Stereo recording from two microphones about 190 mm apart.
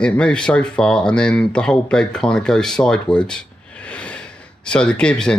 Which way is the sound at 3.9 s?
5° left (ahead or behind).